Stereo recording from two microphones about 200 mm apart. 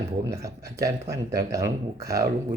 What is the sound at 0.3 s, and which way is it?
Speech, 15° right (ahead or behind).